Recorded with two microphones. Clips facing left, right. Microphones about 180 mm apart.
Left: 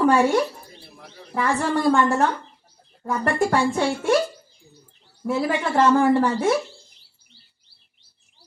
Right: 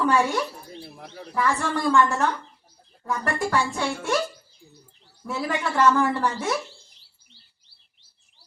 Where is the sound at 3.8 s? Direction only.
45° left (ahead or behind).